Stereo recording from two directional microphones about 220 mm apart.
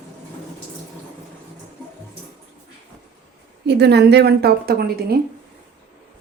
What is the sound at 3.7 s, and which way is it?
A woman's voice, 50° right (ahead or behind).